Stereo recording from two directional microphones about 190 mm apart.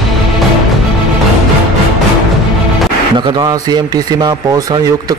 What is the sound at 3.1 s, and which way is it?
Speech, 20° right (ahead or behind).